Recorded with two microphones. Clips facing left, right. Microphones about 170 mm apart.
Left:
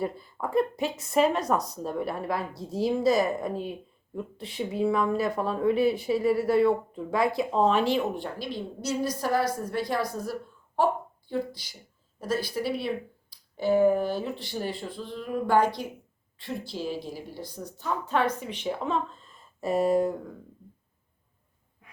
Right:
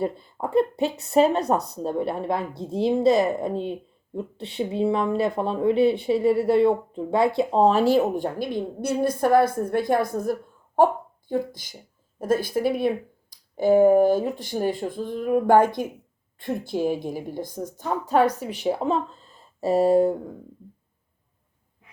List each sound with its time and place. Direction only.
0.0 s a woman's voice: 25° right (ahead or behind)